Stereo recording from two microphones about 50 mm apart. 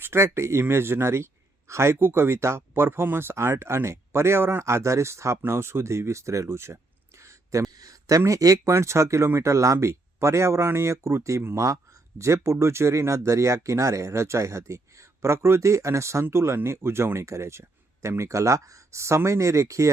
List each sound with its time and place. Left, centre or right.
0.0 s speech: right
0.7 s speech: right
5.5 s speech: right
7.2 s a sound: right
8.0 s speech: right
9.7 s speech: right
15.2 s speech: right
16.3 s speech: right
18.2 s speech: right